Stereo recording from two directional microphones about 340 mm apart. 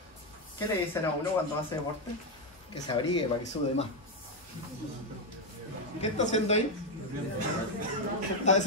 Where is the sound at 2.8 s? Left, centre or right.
Centre.